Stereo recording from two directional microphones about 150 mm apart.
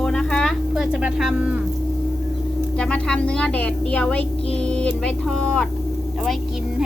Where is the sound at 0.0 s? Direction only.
5° left (ahead or behind).